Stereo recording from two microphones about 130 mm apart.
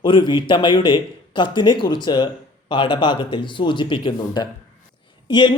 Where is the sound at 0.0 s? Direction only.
35° left (ahead or behind).